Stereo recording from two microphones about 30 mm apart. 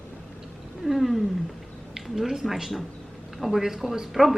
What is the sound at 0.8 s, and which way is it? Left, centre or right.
Wild animals, centre.